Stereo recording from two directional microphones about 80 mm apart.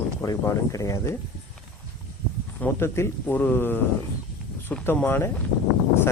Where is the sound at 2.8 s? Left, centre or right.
Left.